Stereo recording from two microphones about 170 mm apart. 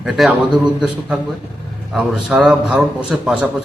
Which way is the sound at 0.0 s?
5° right (ahead or behind).